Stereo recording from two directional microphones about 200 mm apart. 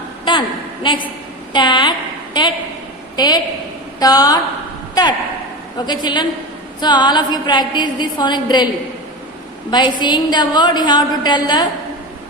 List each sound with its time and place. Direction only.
0.3 s a sound: 25° left (ahead or behind)
1.5 s a woman's voice: 25° left (ahead or behind)
5.8 s a woman's voice: 20° left (ahead or behind)
9.6 s a woman's voice: 20° left (ahead or behind)